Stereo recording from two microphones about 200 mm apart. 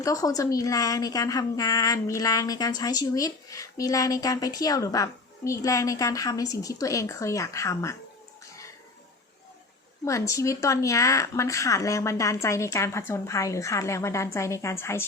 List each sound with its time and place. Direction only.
0.0 s a woman's voice: 15° left (ahead or behind)
10.0 s a woman's voice: 15° left (ahead or behind)